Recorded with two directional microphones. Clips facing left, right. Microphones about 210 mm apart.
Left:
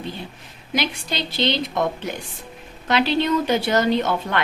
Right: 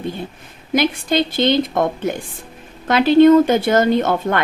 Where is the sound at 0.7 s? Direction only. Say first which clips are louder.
Right 8 dB; 50° right (ahead or behind).